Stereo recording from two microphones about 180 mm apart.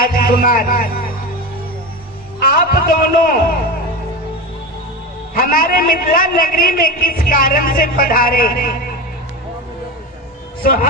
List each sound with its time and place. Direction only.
0.0 s a man's voice: 55° left (ahead or behind)
2.4 s a man's voice: 55° left (ahead or behind)
5.3 s a man's voice: 55° left (ahead or behind)
10.6 s speech: 55° left (ahead or behind)